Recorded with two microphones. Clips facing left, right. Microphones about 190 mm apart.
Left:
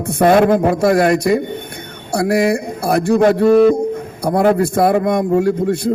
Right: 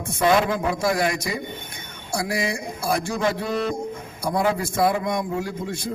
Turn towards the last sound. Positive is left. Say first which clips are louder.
# left 13 dB
turn(degrees=60)  # may be behind; listen again after turning